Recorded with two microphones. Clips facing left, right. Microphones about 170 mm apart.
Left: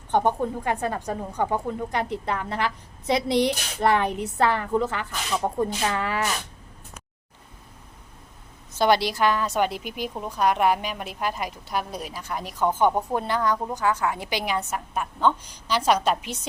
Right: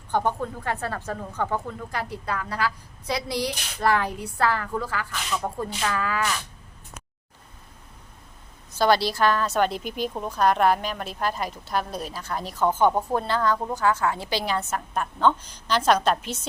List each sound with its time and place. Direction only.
0.1 s speech: 20° left (ahead or behind)
8.7 s a woman's voice: 20° left (ahead or behind)